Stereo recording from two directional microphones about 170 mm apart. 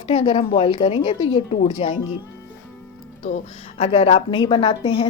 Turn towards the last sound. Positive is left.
turn(degrees=30)  # may be behind; listen again after turning